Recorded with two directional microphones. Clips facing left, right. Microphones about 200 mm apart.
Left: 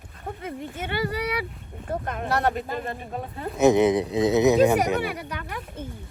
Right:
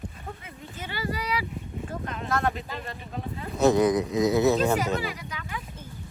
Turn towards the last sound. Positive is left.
turn(degrees=60)  # may be behind; listen again after turning